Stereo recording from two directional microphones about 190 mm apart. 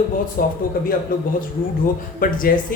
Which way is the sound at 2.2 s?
45° left (ahead or behind).